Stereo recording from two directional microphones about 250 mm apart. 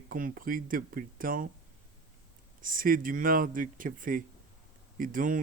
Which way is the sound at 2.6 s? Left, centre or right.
Right.